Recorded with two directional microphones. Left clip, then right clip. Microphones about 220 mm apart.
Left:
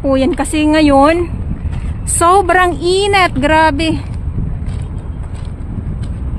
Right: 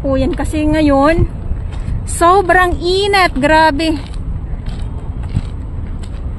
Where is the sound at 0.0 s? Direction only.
20° left (ahead or behind).